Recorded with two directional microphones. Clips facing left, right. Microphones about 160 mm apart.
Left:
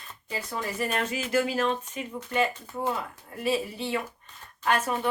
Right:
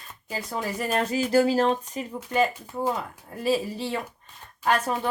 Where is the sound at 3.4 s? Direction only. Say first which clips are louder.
Right 3 dB; 30° right (ahead or behind).